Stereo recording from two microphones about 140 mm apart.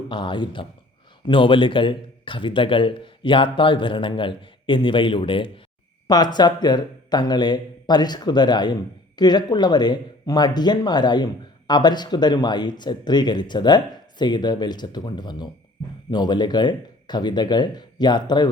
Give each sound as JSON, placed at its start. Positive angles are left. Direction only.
{"t": 0.1, "sound": "speech", "side_deg": 35}